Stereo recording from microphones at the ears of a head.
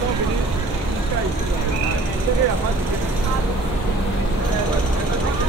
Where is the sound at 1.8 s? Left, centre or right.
Right.